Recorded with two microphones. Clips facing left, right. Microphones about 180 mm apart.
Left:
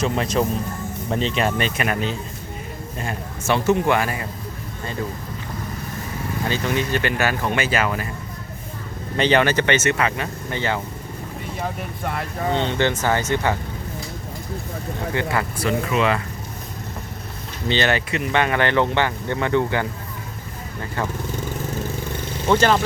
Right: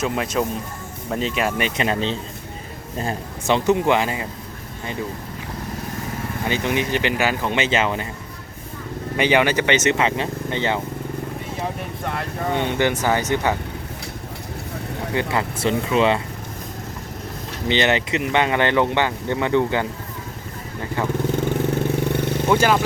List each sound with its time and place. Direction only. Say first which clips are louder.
0.0 s speech: left 1 dB; 5° right (ahead or behind); by 2.1 s 25° right (ahead or behind)
3.4 s speech: right 1 dB; 20° right (ahead or behind)
6.5 s speech: right 1 dB; 15° right (ahead or behind)
9.1 s speech: even; 10° right (ahead or behind)
12.5 s speech: right 1 dB; 15° right (ahead or behind)
15.1 s speech: right 2 dB; 20° right (ahead or behind)
17.7 s speech: right 1 dB; 20° right (ahead or behind)
21.8 s vehicle: right 7 dB; 65° right (ahead or behind)
22.4 s speech: left 1 dB; 10° right (ahead or behind)